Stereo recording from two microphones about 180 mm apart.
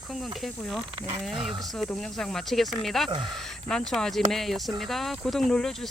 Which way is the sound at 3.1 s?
25° right (ahead or behind).